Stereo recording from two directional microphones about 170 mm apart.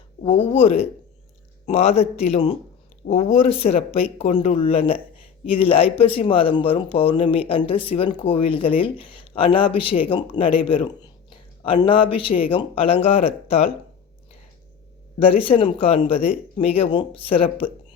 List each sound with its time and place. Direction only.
0.2 s speech: 35° left (ahead or behind)
15.2 s speech: 35° left (ahead or behind)